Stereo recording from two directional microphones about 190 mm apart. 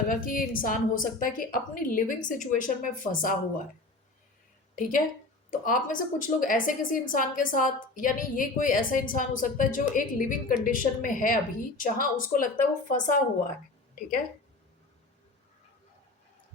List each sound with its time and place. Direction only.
0.1 s a woman's voice: 45° left (ahead or behind)
4.7 s a woman's voice: 45° left (ahead or behind)